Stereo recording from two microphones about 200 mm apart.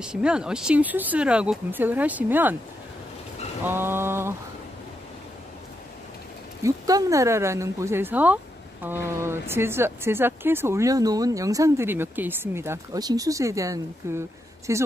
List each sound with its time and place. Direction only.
0.0 s speech: 5° right (ahead or behind)
3.6 s mantra: 10° right (ahead or behind)
6.6 s speech: 15° right (ahead or behind)